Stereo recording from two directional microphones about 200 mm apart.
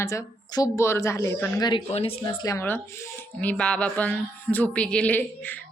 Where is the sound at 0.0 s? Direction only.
15° left (ahead or behind).